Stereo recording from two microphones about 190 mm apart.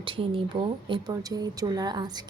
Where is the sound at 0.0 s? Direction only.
25° right (ahead or behind).